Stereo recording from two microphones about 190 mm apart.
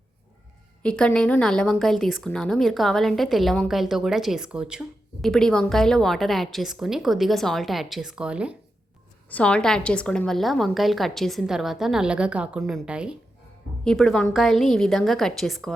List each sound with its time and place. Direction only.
0.8 s a woman's voice: 5° left (ahead or behind)
9.3 s a woman's voice: 5° left (ahead or behind)